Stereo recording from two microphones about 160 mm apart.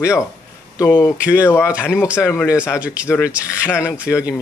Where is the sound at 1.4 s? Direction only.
15° left (ahead or behind).